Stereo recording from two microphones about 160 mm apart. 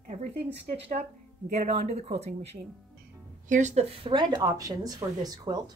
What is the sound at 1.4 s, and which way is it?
A woman's voice, 45° right (ahead or behind).